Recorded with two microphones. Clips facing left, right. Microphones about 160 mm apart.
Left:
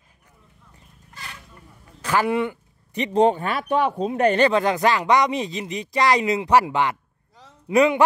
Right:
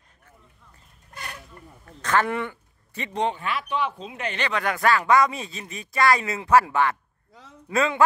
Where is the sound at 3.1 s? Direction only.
40° left (ahead or behind).